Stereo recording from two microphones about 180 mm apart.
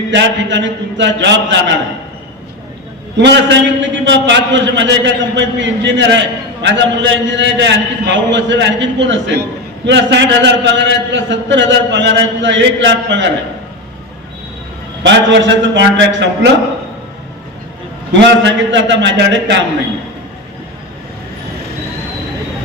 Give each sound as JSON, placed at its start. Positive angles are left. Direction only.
{"t": 0.1, "sound": "a man's voice", "side_deg": -85}
{"t": 3.2, "sound": "a man's voice", "side_deg": -75}
{"t": 15.0, "sound": "a man's voice", "side_deg": -80}
{"t": 18.1, "sound": "a man's voice", "side_deg": -85}